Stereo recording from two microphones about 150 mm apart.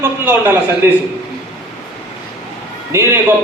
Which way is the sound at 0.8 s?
15° right (ahead or behind).